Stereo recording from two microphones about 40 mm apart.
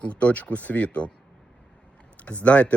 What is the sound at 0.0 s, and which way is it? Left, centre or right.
Speech, left.